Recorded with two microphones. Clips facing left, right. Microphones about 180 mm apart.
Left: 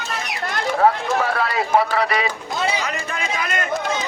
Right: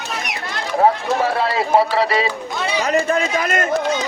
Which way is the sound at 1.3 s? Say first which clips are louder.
Right 3 dB; 25° right (ahead or behind).